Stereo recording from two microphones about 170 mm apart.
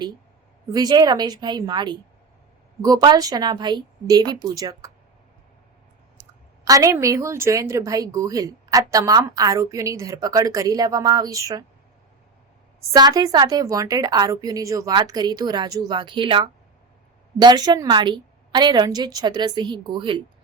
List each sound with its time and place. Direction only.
0.7 s a woman's voice: 25° right (ahead or behind)
6.7 s a woman's voice: 20° right (ahead or behind)
12.9 s a woman's voice: 25° right (ahead or behind)